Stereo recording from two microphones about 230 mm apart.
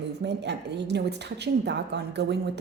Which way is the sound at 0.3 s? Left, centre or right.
Right.